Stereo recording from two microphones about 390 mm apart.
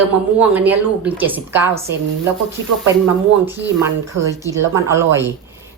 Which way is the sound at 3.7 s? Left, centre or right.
Centre.